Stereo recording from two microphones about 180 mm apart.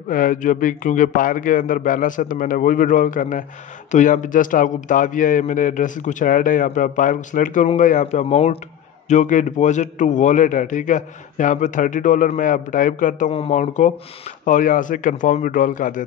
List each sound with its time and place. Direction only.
0.1 s a man's voice: 50° left (ahead or behind)
13.3 s a man's voice: 35° left (ahead or behind)